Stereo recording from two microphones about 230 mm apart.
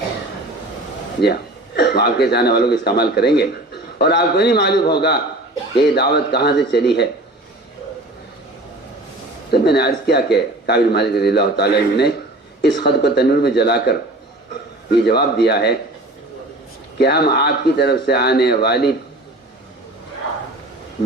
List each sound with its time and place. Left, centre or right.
1.2 s a man's voice: left
9.5 s a man's voice: left
17.0 s a man's voice: left